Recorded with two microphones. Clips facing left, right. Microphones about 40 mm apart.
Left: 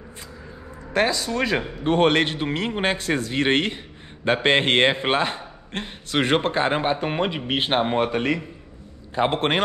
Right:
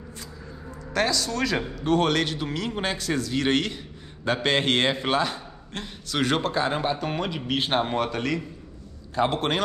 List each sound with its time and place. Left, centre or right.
0.9 s speech: left